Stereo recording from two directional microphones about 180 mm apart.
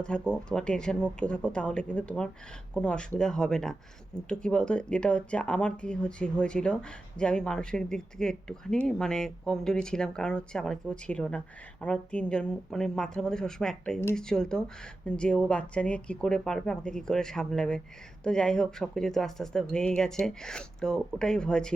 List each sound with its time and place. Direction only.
0.0 s speech: 5° left (ahead or behind)